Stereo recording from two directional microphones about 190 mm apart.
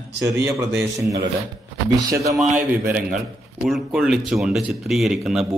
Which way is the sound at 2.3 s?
Centre (ahead or behind).